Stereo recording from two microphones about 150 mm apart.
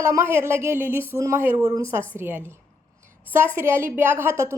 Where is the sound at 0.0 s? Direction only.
20° right (ahead or behind).